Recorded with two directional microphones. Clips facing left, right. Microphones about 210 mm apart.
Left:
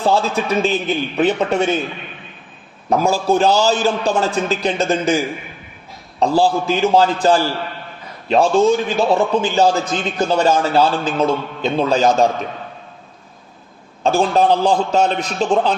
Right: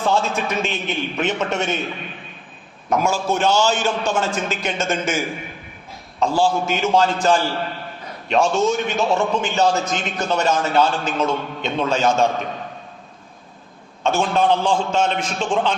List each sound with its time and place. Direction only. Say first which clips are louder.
0.0 s a man's voice: left 3 dB; 35° left (ahead or behind)
2.9 s a man's voice: left 4 dB; 35° left (ahead or behind)
14.2 s a man's voice: left 4 dB; 35° left (ahead or behind)